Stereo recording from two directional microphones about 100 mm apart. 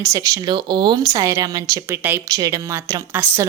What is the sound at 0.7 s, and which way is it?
A woman's voice, 50° right (ahead or behind).